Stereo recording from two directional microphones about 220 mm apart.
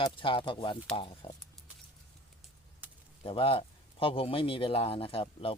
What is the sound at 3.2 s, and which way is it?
A man's voice, 25° left (ahead or behind).